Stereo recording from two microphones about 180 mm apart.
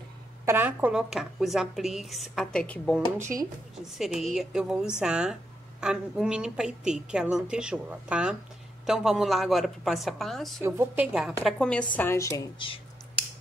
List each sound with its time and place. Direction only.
0.5 s a woman's voice: 10° right (ahead or behind); by 3.0 s 5° left (ahead or behind)
3.2 s a woman's voice: 15° right (ahead or behind)
3.7 s a woman's voice: centre (ahead or behind)
10.6 s a woman's voice: 15° right (ahead or behind)
11.4 s a woman's voice: 5° left (ahead or behind)
12.5 s speech: 30° left (ahead or behind)